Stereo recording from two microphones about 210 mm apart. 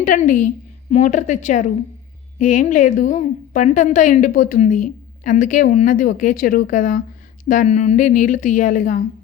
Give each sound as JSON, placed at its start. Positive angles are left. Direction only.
{"t": 0.0, "sound": "speech", "side_deg": 35}